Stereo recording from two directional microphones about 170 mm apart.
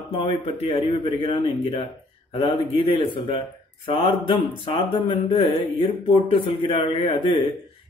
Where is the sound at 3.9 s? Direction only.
30° left (ahead or behind).